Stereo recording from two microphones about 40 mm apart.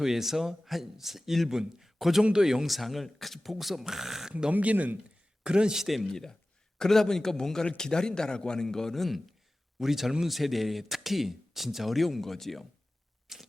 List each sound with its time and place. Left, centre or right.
0.0 s speech: centre
2.6 s speech: centre
4.5 s speech: right
5.4 s speech: right
5.7 s speech: centre
6.1 s a man's voice: centre
9.7 s speech: centre
13.3 s a sound: centre